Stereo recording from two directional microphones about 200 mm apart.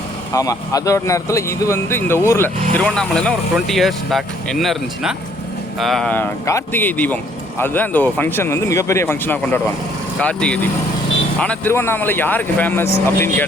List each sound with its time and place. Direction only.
0.3 s speech: 15° left (ahead or behind)